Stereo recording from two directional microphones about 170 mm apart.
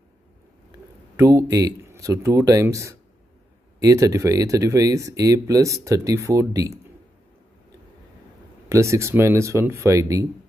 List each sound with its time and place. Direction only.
1.1 s speech: 15° right (ahead or behind)
8.6 s speech: 15° right (ahead or behind)